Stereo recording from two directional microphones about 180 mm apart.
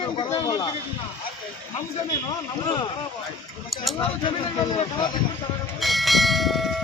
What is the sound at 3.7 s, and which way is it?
Speech, centre (ahead or behind).